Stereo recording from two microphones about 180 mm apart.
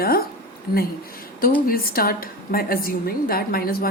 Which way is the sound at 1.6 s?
55° left (ahead or behind).